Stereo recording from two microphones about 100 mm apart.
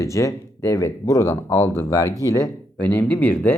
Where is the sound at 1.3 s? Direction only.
25° left (ahead or behind).